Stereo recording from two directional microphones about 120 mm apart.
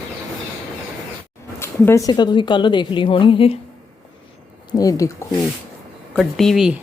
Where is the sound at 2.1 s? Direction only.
35° left (ahead or behind).